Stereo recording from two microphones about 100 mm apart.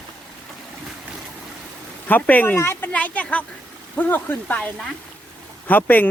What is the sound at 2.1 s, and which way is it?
A man's voice, 15° left (ahead or behind).